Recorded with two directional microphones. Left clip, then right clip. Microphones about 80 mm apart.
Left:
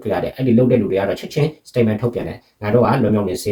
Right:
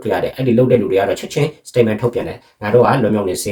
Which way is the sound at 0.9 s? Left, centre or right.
Right.